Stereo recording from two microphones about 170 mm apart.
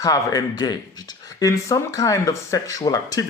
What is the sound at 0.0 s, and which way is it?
Speech, 20° left (ahead or behind).